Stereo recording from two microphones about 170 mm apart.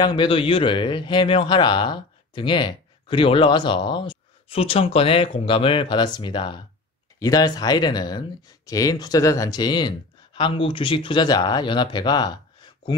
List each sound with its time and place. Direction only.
0.0 s a man's voice: 30° left (ahead or behind)